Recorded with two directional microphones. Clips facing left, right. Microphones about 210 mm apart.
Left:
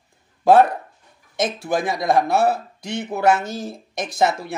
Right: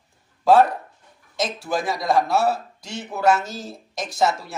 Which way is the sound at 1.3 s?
55° left (ahead or behind).